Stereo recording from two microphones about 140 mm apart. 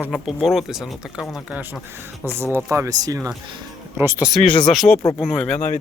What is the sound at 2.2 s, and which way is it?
Speech, 15° right (ahead or behind).